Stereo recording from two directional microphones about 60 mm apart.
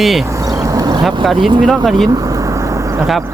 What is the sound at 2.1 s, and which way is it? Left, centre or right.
Vehicle, right.